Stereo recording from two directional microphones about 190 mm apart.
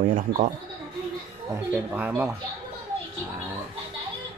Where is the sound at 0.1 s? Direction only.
45° right (ahead or behind).